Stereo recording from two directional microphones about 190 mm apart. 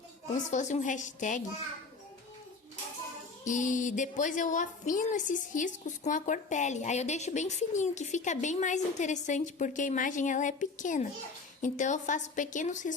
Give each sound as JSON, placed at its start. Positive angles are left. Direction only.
{"t": 0.5, "sound": "a woman's voice", "side_deg": 40}
{"t": 3.4, "sound": "a woman's voice", "side_deg": 40}